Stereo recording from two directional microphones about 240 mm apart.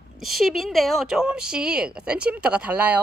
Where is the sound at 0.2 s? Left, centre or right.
Centre.